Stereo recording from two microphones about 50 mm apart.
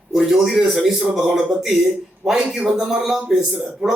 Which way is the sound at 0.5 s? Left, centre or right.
Centre.